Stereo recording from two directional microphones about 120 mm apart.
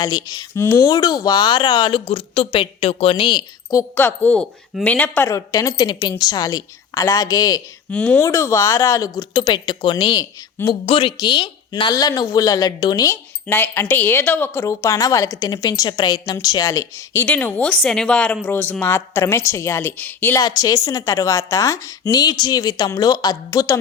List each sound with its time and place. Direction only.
0.0 s speech: 35° left (ahead or behind)
0.5 s speech: 25° left (ahead or behind)
3.9 s speech: 15° left (ahead or behind)
5.3 s speech: 30° left (ahead or behind)
7.9 s speech: 10° left (ahead or behind)
8.2 s speech: 25° left (ahead or behind)
10.8 s speech: 45° left (ahead or behind)
13.1 s speech: 20° left (ahead or behind)
17.2 s speech: 15° left (ahead or behind)
20.4 s speech: 35° left (ahead or behind)